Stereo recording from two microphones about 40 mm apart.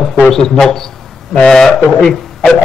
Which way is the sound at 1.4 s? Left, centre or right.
Centre.